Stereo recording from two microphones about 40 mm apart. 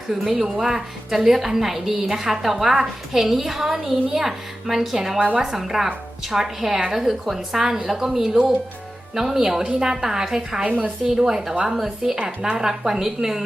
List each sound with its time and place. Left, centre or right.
0.1 s a woman's voice: centre
10.7 s a woman's voice: right
11.0 s a woman's voice: centre